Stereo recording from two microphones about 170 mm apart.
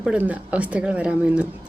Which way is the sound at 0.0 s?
5° right (ahead or behind).